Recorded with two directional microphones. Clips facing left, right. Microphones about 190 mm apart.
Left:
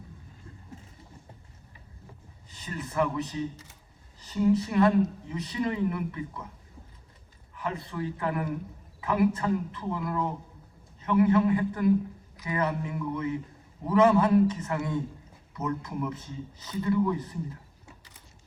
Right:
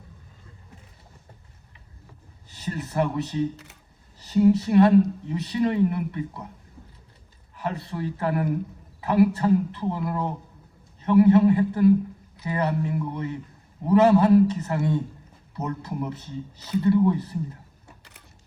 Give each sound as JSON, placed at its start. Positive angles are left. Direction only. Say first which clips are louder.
{"t": 2.6, "sound": "speech", "louder": "right 3 dB", "side_deg": -35}
{"t": 7.5, "sound": "speech", "louder": "right 3 dB", "side_deg": -35}
{"t": 17.8, "sound": "mechanisms", "louder": "right 1 dB", "side_deg": -65}